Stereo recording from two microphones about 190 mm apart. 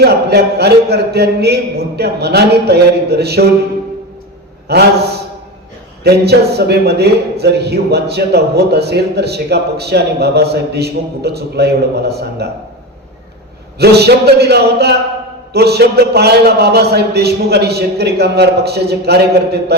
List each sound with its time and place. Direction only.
0.0 s a man's voice: 60° right (ahead or behind)
4.7 s a man's voice: 60° right (ahead or behind)
6.0 s a man's voice: 60° right (ahead or behind)
13.7 s a man's voice: 60° right (ahead or behind)